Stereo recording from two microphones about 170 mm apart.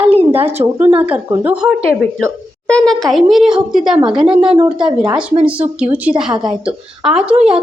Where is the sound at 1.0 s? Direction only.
10° right (ahead or behind).